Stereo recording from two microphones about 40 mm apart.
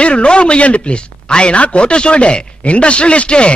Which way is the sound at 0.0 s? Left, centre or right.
Left.